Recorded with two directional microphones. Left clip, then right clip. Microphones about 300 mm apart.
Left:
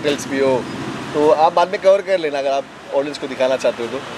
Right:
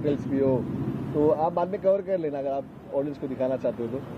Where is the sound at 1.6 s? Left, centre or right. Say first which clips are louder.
Left 10 dB; centre.